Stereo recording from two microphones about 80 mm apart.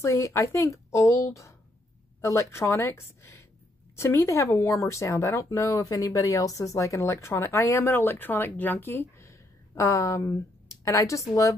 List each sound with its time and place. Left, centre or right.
0.0 s speech: left
9.8 s a woman's voice: left